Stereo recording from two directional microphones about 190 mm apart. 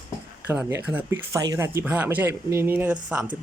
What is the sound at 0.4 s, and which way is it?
A man's voice, 10° right (ahead or behind).